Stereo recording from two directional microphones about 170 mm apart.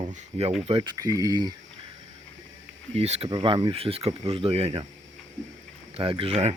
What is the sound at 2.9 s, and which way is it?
Speech, 40° right (ahead or behind).